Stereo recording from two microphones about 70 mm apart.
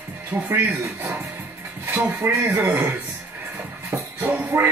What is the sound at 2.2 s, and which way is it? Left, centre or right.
Speech, right.